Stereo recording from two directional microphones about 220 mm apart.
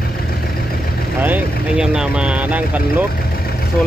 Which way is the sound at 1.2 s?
5° right (ahead or behind).